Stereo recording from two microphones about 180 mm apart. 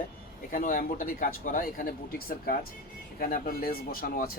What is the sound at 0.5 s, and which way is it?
Speech, 45° left (ahead or behind).